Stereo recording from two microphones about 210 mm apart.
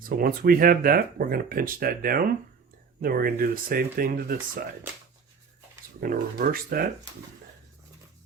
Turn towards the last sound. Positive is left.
turn(degrees=-45)  # may be behind; listen again after turning